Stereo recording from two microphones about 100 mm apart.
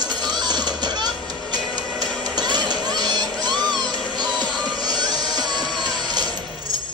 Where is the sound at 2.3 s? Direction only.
45° right (ahead or behind).